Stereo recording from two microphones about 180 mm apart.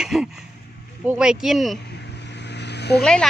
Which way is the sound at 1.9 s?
70° left (ahead or behind).